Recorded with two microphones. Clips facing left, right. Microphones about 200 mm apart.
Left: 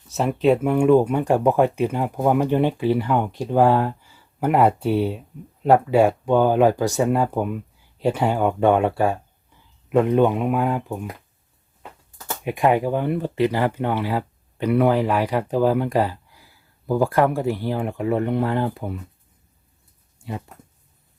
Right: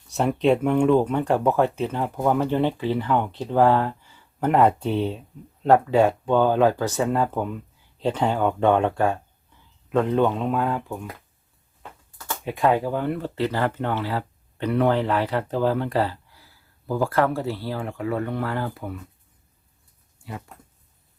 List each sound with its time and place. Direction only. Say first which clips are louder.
0.1 s speech: left 1 dB; centre (ahead or behind); by 18.9 s 25° left (ahead or behind)
20.2 s speech: left 5 dB; 20° left (ahead or behind)